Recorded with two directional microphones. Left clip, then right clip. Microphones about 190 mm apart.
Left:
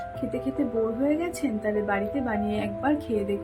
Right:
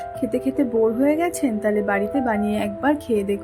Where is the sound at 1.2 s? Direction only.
35° right (ahead or behind).